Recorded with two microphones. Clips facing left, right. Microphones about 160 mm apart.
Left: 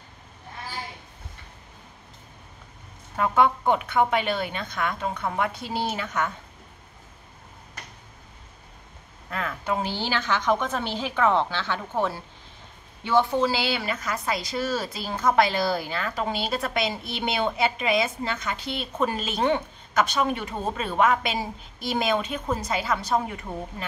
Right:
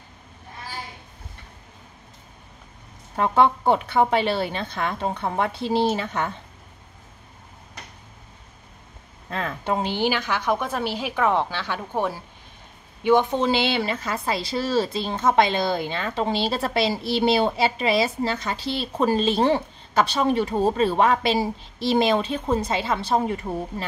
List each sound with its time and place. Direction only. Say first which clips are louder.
3.2 s a woman's voice: right 2 dB; 30° right (ahead or behind)
9.3 s a woman's voice: right 2 dB; 25° right (ahead or behind)